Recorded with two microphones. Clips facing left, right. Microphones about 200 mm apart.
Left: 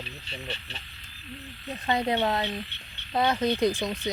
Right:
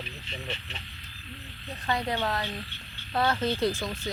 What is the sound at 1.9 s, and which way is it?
Speech, 20° left (ahead or behind).